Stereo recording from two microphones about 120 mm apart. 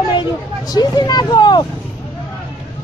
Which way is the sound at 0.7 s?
35° left (ahead or behind).